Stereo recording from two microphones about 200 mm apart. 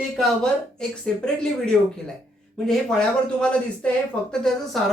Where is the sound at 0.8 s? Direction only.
5° left (ahead or behind).